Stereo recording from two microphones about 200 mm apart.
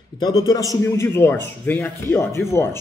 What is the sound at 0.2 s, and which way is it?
A man's voice, 20° left (ahead or behind).